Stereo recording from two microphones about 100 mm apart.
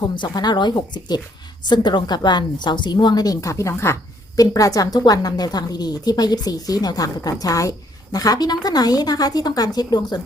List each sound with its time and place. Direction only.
0.0 s a woman's voice: 45° left (ahead or behind)